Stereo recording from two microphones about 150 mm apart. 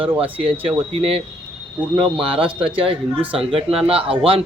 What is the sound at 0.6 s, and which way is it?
A man's voice, 40° right (ahead or behind).